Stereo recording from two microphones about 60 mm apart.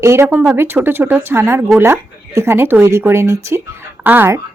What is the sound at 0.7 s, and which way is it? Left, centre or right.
Speech, right.